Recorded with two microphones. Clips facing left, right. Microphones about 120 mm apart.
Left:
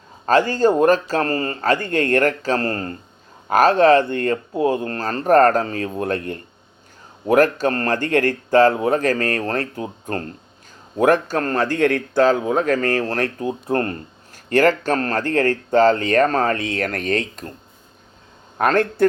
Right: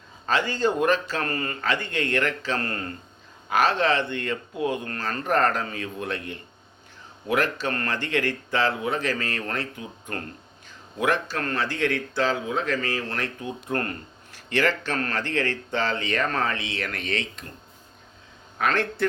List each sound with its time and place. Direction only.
0.3 s speech: 40° left (ahead or behind)
14.3 s speech: 45° left (ahead or behind)
18.5 s speech: 45° left (ahead or behind)